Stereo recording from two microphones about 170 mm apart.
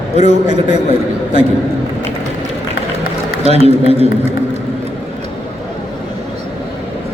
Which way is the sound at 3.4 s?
35° right (ahead or behind).